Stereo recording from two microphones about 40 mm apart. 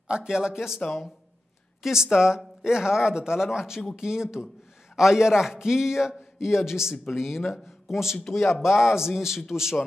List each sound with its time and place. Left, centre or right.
0.1 s speech: centre
1.8 s speech: centre